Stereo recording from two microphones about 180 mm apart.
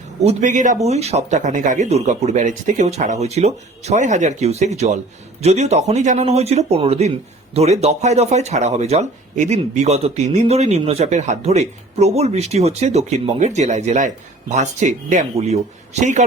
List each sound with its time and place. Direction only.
0.2 s speech: 40° right (ahead or behind)